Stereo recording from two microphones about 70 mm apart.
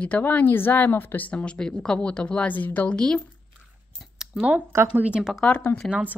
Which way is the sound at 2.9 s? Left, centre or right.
Centre.